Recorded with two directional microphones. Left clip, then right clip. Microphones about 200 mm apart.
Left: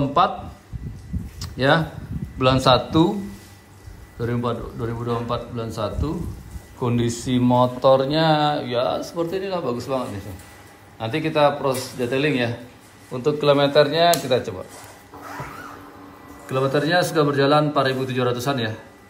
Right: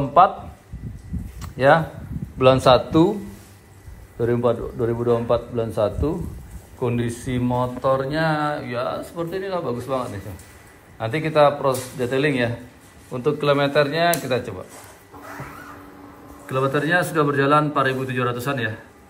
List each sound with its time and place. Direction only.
0.2 s speech: 5° left (ahead or behind)
1.4 s a sound: 10° left (ahead or behind)
2.3 s speech: 5° left (ahead or behind)
4.2 s a man's voice: centre (ahead or behind)
6.8 s speech: 15° left (ahead or behind)
16.4 s speech: 5° left (ahead or behind)